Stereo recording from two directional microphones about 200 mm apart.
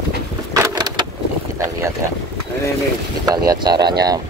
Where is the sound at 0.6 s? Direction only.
20° right (ahead or behind).